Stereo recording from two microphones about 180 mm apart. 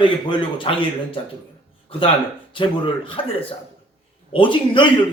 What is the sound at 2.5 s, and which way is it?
A man's voice, 25° left (ahead or behind).